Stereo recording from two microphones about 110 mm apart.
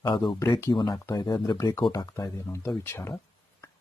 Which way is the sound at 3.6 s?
25° left (ahead or behind).